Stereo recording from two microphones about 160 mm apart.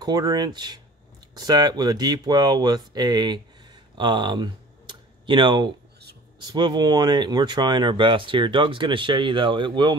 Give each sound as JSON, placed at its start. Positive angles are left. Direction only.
{"t": 0.0, "sound": "speech", "side_deg": -25}
{"t": 3.9, "sound": "a sound", "side_deg": -30}
{"t": 6.4, "sound": "speech", "side_deg": -25}